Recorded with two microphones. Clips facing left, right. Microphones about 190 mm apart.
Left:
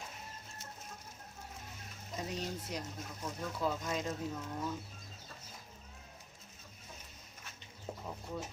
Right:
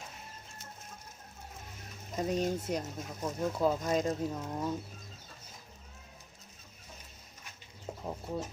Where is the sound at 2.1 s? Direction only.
45° right (ahead or behind).